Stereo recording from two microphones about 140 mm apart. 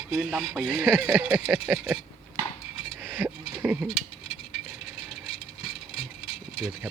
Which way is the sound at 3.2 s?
15° right (ahead or behind).